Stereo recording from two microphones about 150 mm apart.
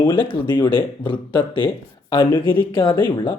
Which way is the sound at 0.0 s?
35° left (ahead or behind).